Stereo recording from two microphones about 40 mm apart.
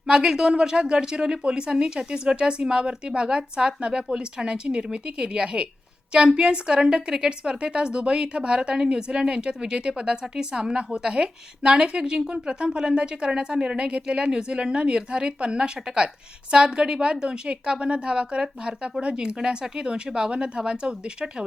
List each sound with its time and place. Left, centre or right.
0.1 s a woman's voice: centre